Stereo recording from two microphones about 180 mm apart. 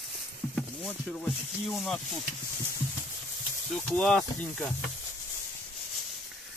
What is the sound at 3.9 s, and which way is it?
Speech, 5° left (ahead or behind).